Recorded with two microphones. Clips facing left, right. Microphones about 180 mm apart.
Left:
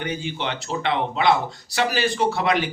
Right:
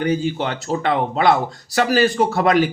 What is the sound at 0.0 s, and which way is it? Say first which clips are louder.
A man's voice: right 7 dB; 40° right (ahead or behind).